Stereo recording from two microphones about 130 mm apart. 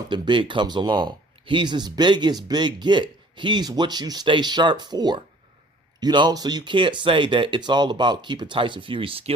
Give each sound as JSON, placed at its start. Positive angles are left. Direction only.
{"t": 0.1, "sound": "speech", "side_deg": -40}